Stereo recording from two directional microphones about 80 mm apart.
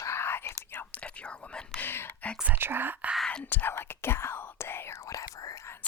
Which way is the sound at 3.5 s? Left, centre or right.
Left.